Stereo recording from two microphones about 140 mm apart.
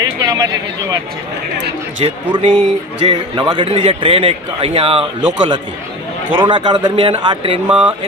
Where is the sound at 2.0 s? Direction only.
45° right (ahead or behind).